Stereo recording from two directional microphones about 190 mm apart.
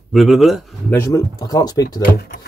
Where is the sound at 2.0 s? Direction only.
55° left (ahead or behind).